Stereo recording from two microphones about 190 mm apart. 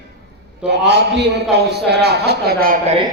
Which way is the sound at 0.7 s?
65° right (ahead or behind).